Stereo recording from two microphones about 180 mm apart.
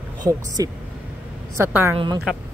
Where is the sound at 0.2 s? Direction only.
20° right (ahead or behind).